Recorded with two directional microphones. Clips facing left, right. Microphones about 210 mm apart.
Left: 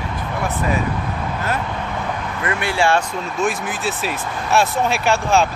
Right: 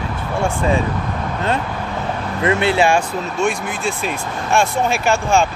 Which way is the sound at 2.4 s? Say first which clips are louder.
Right 5 dB; 25° right (ahead or behind).